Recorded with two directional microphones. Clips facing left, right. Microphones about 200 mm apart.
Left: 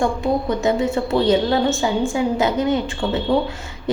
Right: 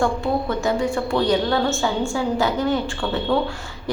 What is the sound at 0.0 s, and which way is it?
A woman's voice, 15° left (ahead or behind).